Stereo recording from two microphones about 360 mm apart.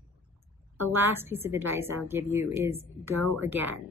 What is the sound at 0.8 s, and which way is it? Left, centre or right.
A woman's voice, centre.